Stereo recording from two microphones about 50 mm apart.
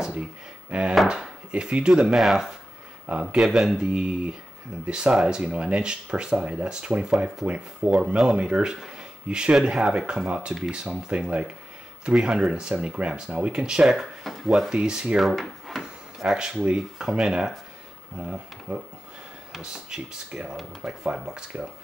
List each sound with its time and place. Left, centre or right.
0.7 s chopping: right
1.0 s speech: centre
2.1 s speech: centre
3.1 s speech: right
3.3 s speech: centre
13.8 s speech: centre
14.7 s speech: centre
15.1 s speech: centre
15.8 s speech: centre